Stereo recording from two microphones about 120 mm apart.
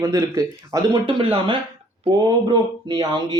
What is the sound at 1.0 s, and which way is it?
Speech, 45° right (ahead or behind).